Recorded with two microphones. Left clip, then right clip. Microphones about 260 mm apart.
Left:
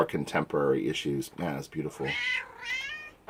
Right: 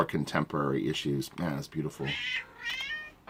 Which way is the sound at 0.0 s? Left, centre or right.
Right.